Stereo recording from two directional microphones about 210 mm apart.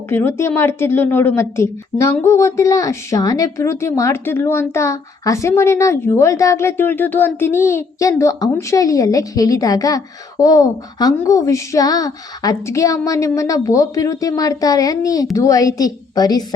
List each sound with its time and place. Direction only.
0.1 s a woman's voice: 10° left (ahead or behind)